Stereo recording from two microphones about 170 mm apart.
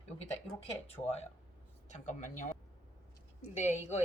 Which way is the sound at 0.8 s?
35° left (ahead or behind).